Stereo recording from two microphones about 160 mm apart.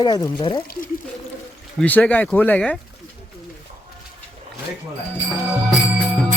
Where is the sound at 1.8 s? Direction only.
10° left (ahead or behind).